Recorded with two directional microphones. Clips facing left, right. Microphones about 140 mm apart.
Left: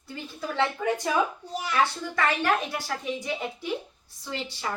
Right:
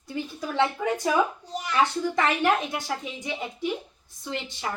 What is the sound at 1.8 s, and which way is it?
A woman's voice, 20° right (ahead or behind).